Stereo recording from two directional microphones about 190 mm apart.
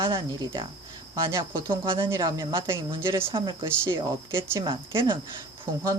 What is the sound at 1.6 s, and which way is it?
Speech, 25° right (ahead or behind).